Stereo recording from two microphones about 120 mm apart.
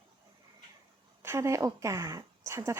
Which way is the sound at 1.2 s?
25° right (ahead or behind).